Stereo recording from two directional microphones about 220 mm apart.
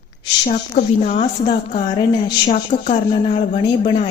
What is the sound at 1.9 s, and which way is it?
Speech, 25° left (ahead or behind).